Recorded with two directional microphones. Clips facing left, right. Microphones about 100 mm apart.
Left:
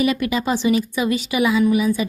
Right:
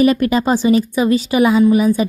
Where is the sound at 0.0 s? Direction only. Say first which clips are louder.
Right 6 dB; 40° right (ahead or behind).